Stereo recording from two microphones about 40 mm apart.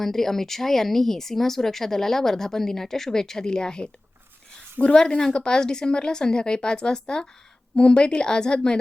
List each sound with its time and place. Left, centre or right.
0.0 s speech: centre
4.9 s a woman's voice: centre